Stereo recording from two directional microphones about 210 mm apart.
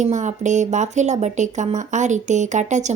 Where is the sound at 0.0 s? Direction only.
35° right (ahead or behind).